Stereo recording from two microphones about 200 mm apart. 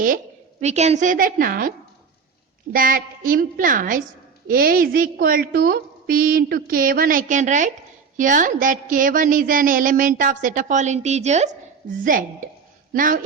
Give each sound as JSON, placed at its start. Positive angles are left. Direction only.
{"t": 0.6, "sound": "a woman's voice", "side_deg": -35}
{"t": 2.7, "sound": "a woman's voice", "side_deg": -45}